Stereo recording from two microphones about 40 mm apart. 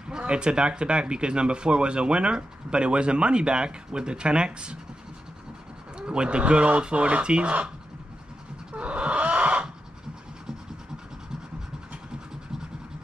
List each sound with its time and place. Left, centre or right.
0.1 s speech: right
5.9 s speech: right
8.7 s chicken: right